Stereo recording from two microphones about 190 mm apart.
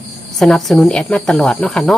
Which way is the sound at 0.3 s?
Centre (ahead or behind).